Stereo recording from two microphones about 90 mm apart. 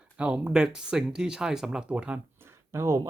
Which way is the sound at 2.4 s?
30° right (ahead or behind).